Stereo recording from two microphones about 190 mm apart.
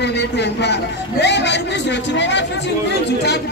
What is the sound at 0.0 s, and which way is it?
Speech, 65° left (ahead or behind).